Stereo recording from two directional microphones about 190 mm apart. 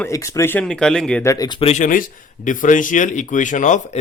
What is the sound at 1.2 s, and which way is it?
A man's voice, 20° left (ahead or behind).